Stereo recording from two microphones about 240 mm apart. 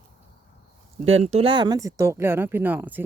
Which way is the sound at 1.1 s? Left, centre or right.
Right.